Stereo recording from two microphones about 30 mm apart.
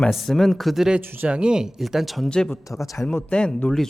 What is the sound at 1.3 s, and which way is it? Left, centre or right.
Speech, right.